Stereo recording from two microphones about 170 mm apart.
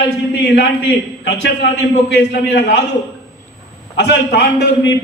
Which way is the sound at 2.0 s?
80° left.